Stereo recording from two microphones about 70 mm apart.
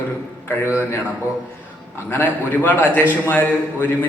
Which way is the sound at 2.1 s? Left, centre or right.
Left.